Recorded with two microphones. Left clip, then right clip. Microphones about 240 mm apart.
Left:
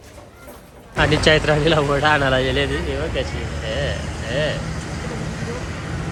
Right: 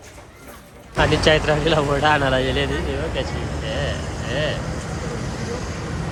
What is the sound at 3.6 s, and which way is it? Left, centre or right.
Speech, right.